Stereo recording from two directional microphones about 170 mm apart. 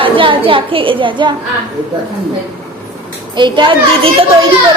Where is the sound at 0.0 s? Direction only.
30° right (ahead or behind).